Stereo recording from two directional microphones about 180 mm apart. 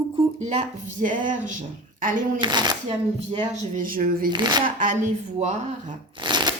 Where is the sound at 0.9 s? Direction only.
45° right (ahead or behind).